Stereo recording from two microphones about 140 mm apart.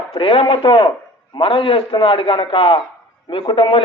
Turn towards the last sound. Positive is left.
turn(degrees=35)  # may be behind; listen again after turning